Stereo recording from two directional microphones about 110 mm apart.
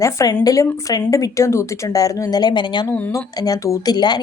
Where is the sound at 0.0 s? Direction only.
30° left (ahead or behind).